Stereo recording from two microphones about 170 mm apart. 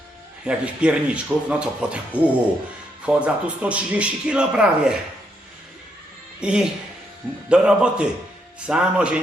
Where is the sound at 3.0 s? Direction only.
5° right (ahead or behind).